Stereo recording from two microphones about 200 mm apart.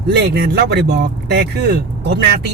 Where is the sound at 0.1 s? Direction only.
55° right (ahead or behind).